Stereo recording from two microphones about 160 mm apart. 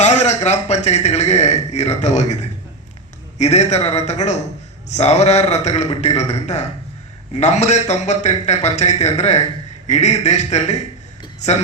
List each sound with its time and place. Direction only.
0.0 s a man's voice: 45° left (ahead or behind)